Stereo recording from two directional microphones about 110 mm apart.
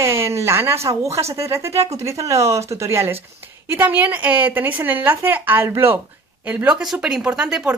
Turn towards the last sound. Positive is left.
turn(degrees=-5)  # may be behind; listen again after turning